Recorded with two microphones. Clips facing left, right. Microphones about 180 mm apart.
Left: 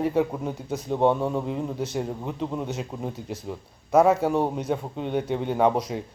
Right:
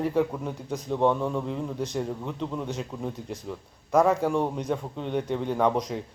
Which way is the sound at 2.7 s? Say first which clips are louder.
Left 1 dB; 5° left (ahead or behind).